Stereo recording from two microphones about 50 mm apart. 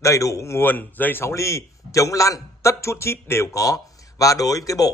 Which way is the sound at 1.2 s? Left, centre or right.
Left.